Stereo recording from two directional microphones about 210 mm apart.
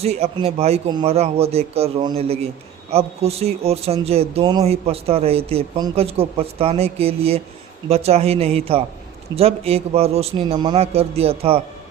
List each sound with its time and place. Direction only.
0.0 s speech: 30° right (ahead or behind)